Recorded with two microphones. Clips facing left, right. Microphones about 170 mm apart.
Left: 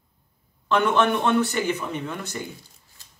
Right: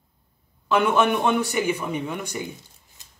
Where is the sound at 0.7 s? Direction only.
10° right (ahead or behind).